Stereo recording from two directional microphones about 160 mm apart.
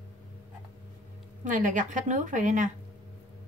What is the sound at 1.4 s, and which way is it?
A woman's voice, 55° right (ahead or behind).